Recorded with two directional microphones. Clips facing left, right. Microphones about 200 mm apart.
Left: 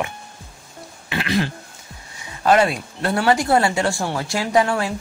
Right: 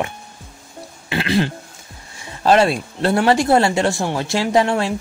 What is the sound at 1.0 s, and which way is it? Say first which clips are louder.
Throat clearing: right 3 dB; 30° right (ahead or behind).